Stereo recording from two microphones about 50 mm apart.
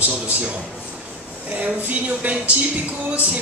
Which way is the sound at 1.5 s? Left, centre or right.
Right.